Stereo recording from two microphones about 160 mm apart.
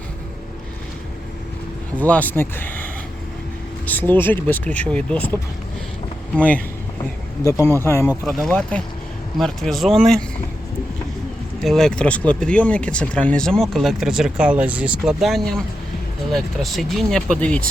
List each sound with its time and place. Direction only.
2.0 s speech: 10° left (ahead or behind)
6.3 s speech: 10° left (ahead or behind)
7.4 s speech: 20° left (ahead or behind)
8.2 s speech: 5° left (ahead or behind)
11.6 s speech: 5° left (ahead or behind)